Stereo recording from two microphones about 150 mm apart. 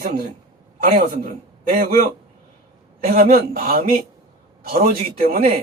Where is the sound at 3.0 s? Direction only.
75° right (ahead or behind).